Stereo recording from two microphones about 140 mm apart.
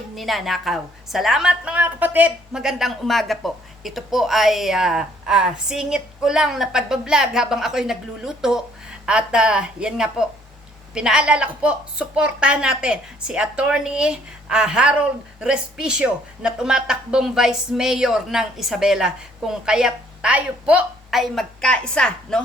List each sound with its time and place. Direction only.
0.2 s a woman's voice: centre (ahead or behind)